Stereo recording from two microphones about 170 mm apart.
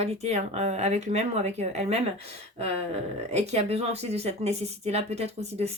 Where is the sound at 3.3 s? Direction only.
40° right (ahead or behind).